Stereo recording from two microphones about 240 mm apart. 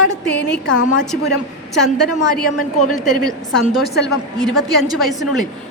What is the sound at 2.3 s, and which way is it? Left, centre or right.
Speech, left.